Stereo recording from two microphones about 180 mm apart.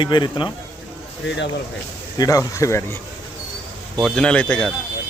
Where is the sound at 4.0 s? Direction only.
5° left (ahead or behind).